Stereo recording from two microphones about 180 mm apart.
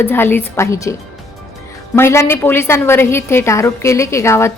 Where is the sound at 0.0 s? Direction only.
10° left (ahead or behind).